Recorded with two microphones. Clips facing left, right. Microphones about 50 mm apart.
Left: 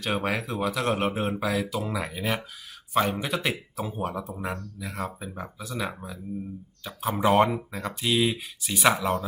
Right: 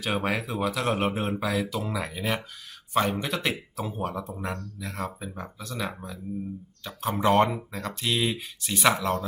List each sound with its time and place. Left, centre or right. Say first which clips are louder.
0.0 s speech: even; centre